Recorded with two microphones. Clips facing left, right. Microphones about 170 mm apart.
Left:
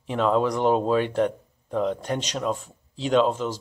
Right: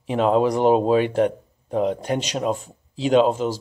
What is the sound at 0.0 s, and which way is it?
Speech, 15° right (ahead or behind).